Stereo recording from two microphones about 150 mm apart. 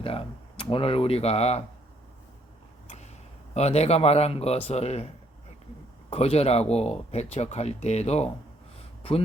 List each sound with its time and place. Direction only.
0.0 s speech: 40° left (ahead or behind)
2.8 s a sound: 45° left (ahead or behind)
3.5 s a man's voice: 45° left (ahead or behind)
6.1 s a man's voice: 40° left (ahead or behind)